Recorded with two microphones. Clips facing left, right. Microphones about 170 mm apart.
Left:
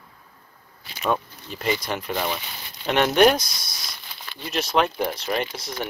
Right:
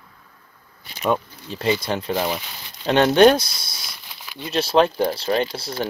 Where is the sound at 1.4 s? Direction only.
30° right (ahead or behind).